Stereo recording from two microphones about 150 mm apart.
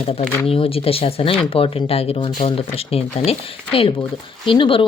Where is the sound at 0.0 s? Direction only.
40° left (ahead or behind).